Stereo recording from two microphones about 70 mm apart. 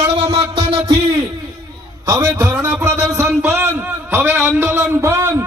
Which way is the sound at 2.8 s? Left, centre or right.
Right.